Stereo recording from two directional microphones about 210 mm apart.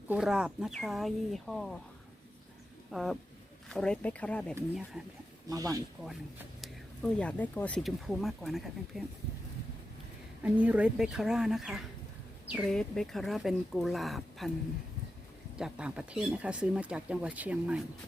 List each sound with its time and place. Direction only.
0.1 s speech: 5° right (ahead or behind)
2.9 s speech: centre (ahead or behind)
5.5 s speech: 15° right (ahead or behind)
6.6 s speech: 5° left (ahead or behind)
10.4 s speech: 5° right (ahead or behind)
15.5 s speech: 5° right (ahead or behind)